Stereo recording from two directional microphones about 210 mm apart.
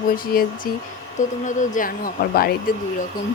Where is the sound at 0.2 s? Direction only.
45° left (ahead or behind).